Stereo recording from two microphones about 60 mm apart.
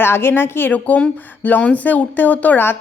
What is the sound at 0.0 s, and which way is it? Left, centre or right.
Speech, left.